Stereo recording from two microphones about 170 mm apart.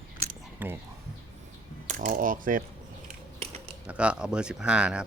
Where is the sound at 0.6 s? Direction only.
10° right (ahead or behind).